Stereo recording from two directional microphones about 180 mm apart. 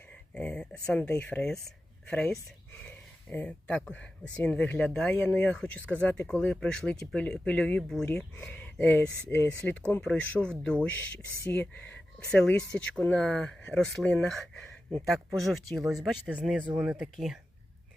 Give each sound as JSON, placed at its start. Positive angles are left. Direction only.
{"t": 0.3, "sound": "speech", "side_deg": 5}
{"t": 15.8, "sound": "speech", "side_deg": -20}
{"t": 16.2, "sound": "speech", "side_deg": 0}